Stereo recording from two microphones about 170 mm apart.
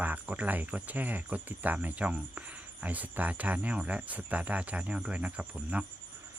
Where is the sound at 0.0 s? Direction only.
10° right (ahead or behind).